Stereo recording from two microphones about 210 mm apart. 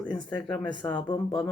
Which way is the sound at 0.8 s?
20° left (ahead or behind).